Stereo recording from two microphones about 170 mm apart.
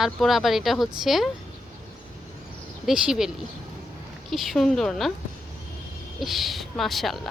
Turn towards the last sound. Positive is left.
turn(degrees=0)  # may be behind; listen again after turning